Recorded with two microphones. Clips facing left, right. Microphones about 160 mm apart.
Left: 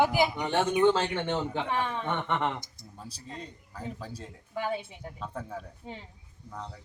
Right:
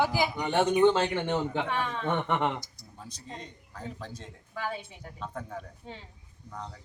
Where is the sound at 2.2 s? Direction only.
10° right (ahead or behind).